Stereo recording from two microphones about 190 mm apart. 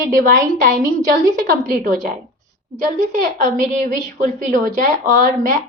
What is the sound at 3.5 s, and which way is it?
A woman's voice, 45° right (ahead or behind).